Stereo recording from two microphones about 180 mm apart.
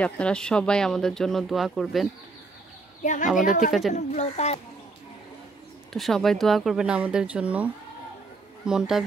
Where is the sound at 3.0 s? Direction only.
45° left (ahead or behind).